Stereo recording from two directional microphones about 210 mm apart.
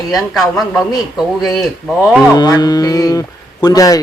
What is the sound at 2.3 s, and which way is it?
Mantra, 20° left (ahead or behind).